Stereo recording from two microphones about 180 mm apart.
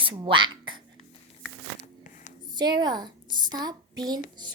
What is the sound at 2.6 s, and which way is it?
A child's voice, 25° right (ahead or behind).